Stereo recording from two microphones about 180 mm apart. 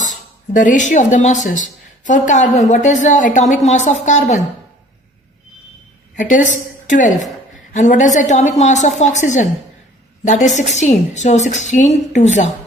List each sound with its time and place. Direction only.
0.0 s a woman's voice: 45° left (ahead or behind)
6.1 s a woman's voice: 45° left (ahead or behind)